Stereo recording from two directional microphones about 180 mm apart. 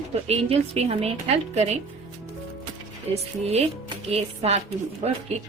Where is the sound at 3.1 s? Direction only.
35° right (ahead or behind).